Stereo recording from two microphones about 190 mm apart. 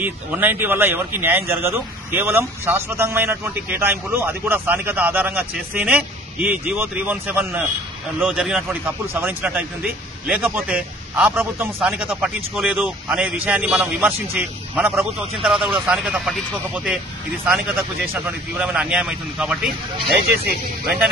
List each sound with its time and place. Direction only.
0.0 s a man's voice: 10° right (ahead or behind)
18.1 s a man's voice: 5° right (ahead or behind)
20.2 s speech: 55° right (ahead or behind)